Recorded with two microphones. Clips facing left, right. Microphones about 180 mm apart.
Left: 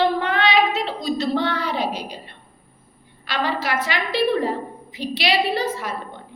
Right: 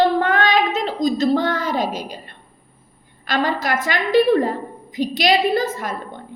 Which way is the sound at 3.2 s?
45° right (ahead or behind).